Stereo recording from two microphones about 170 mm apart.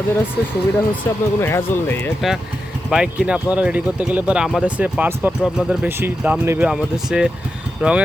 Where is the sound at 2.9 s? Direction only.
5° right (ahead or behind).